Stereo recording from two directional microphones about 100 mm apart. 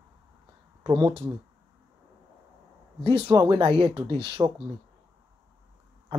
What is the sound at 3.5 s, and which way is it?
Speech, 55° right (ahead or behind).